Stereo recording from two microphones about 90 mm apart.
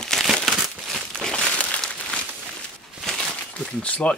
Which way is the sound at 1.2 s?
10° left (ahead or behind).